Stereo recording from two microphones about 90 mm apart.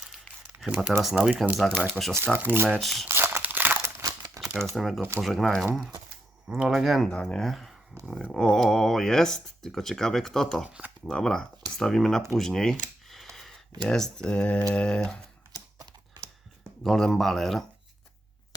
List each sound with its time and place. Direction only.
0.6 s speech: centre (ahead or behind)
1.1 s speech: 15° right (ahead or behind)
1.5 s a sound: 5° left (ahead or behind)
1.9 s speech: centre (ahead or behind)
2.3 s speech: 20° right (ahead or behind)
2.8 s speech: centre (ahead or behind)
3.1 s crumpling: 25° right (ahead or behind)
4.4 s crumpling: 40° right (ahead or behind)
4.7 s speech: centre (ahead or behind)
10.7 s speech: 15° right (ahead or behind)
11.0 s speech: 5° left (ahead or behind)
12.3 s a sound: 5° left (ahead or behind)
16.8 s speech: 5° left (ahead or behind)